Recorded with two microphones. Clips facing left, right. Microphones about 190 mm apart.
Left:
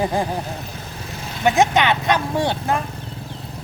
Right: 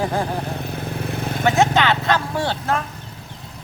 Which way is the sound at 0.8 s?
55° right (ahead or behind).